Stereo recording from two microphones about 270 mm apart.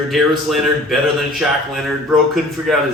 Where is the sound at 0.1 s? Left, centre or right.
Centre.